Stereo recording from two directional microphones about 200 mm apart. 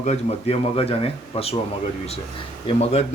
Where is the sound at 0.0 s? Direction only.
30° left (ahead or behind).